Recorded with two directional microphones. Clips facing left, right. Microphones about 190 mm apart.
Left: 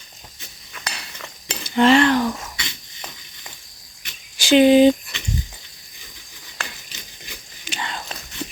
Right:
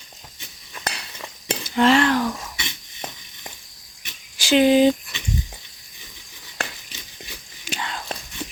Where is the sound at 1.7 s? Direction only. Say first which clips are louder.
Left 3 dB; centre (ahead or behind).